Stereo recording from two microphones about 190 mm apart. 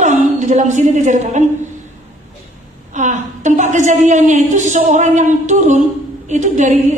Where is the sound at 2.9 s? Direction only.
40° right (ahead or behind).